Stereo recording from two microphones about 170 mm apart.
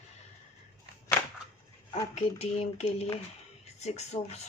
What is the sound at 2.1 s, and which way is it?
Speech, 40° left (ahead or behind).